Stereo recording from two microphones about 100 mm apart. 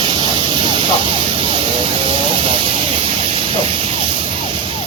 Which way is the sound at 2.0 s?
65° right (ahead or behind).